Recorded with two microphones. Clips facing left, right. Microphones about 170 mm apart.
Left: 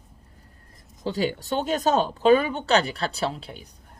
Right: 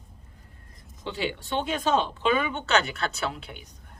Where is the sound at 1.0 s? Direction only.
40° left (ahead or behind).